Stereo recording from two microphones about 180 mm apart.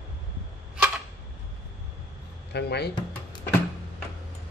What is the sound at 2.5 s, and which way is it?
Speech, 65° left (ahead or behind).